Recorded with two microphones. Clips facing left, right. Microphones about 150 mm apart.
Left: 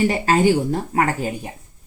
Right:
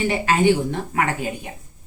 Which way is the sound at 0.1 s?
40° left (ahead or behind).